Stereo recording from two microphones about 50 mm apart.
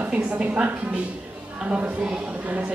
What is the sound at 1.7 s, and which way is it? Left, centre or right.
Speech, right.